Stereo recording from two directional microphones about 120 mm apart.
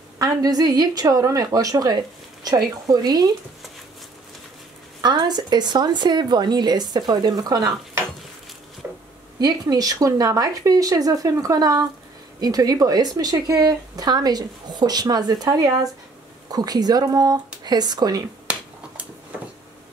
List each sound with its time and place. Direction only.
0.2 s speech: 30° right (ahead or behind)
5.0 s speech: 35° right (ahead or behind)
8.8 s a sound: 15° right (ahead or behind)
9.4 s speech: 35° right (ahead or behind)